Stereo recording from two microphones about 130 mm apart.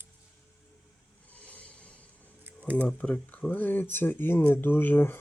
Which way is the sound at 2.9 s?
10° left (ahead or behind).